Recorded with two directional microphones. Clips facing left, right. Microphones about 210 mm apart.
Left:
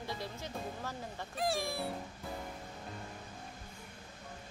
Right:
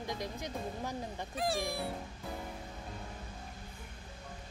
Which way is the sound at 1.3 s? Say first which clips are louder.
Even; centre (ahead or behind).